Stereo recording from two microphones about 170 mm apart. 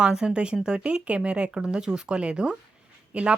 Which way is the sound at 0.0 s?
5° right (ahead or behind).